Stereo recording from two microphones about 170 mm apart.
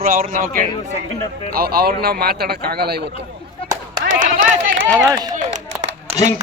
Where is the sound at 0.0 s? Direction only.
50° right (ahead or behind).